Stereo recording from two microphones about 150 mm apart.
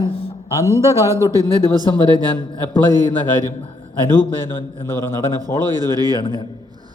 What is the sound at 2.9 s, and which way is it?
Speech, 25° right (ahead or behind).